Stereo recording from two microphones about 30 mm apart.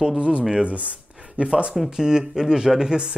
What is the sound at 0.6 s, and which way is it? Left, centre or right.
Speech, right.